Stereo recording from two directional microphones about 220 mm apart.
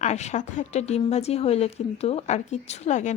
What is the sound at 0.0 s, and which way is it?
A woman's voice, 30° left (ahead or behind).